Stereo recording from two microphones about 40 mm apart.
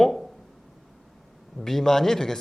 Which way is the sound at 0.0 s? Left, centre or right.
Centre.